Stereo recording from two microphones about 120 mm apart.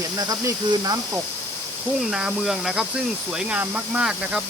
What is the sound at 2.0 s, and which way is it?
Speech, 5° right (ahead or behind).